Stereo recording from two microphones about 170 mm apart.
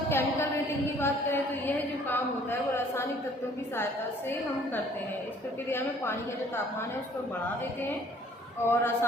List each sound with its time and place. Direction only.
0.1 s a sound: 15° left (ahead or behind)
0.9 s a woman's voice: 15° left (ahead or behind)
5.6 s a woman's voice: 15° left (ahead or behind)
8.7 s a woman's voice: 15° left (ahead or behind)